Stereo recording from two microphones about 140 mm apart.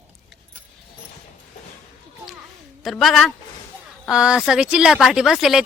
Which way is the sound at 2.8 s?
Centre (ahead or behind).